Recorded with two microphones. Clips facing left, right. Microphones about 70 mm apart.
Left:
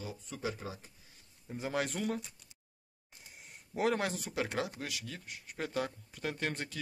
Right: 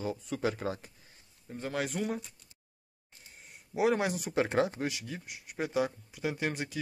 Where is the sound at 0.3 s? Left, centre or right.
Right.